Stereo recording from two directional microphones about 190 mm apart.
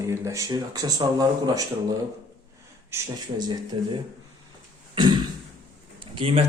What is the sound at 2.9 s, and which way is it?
Speech, 20° right (ahead or behind).